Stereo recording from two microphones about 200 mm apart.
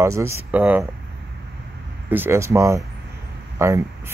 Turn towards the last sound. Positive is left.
turn(degrees=-15)  # may be behind; listen again after turning